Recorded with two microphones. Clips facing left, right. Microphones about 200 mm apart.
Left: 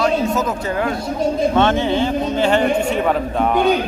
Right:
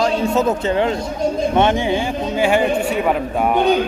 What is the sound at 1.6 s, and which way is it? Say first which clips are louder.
Speech: right 1 dB; 15° right (ahead or behind).